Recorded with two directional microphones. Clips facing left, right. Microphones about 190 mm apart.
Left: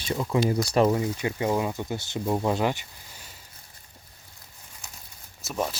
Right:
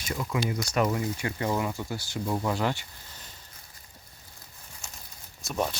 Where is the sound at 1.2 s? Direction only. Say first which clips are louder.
Left 3 dB; 20° left (ahead or behind).